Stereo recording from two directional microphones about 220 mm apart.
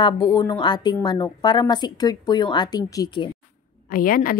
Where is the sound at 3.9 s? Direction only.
40° left (ahead or behind).